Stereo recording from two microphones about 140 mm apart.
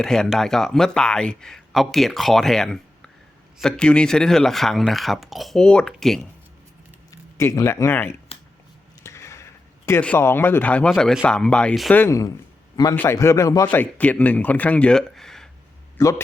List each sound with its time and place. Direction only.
0.0 s speech: 5° left (ahead or behind)
7.1 s speech: 20° left (ahead or behind); by 11.9 s 5° left (ahead or behind)
11.9 s speech: 20° left (ahead or behind)
13.7 s speech: 10° left (ahead or behind)
16.0 s a man's voice: 20° left (ahead or behind)